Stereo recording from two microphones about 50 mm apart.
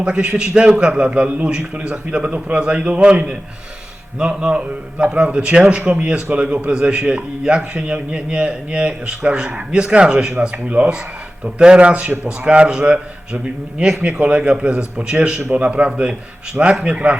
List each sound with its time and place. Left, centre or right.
0.0 s a man's voice: right
10.4 s a man's voice: right
14.0 s a man's voice: centre
15.5 s a man's voice: right